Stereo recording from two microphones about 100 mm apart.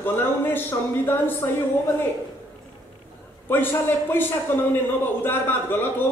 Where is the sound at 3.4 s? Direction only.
20° left (ahead or behind).